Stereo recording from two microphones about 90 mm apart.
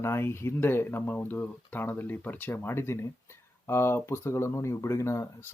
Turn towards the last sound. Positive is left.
turn(degrees=30)  # may be behind; listen again after turning